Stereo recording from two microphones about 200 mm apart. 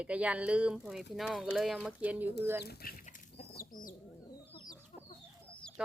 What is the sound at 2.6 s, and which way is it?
Chicken, 50° left (ahead or behind).